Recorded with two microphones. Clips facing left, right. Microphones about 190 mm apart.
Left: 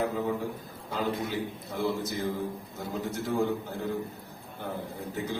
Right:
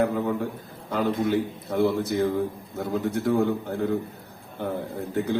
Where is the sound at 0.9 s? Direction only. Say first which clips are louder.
Right 7 dB; 60° right (ahead or behind).